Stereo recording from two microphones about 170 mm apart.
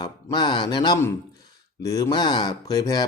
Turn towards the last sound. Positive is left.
turn(degrees=20)  # may be behind; listen again after turning